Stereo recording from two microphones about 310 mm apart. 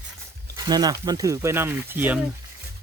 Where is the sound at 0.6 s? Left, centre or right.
Centre.